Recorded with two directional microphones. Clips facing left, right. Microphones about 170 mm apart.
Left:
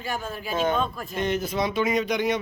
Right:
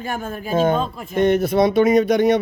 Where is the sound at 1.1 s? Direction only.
60° right (ahead or behind).